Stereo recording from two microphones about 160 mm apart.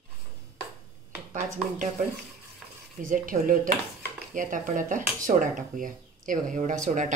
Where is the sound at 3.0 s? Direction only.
55° right (ahead or behind).